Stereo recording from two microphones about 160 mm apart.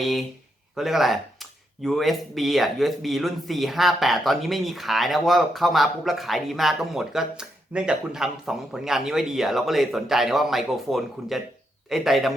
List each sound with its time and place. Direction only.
0.0 s speech: centre (ahead or behind)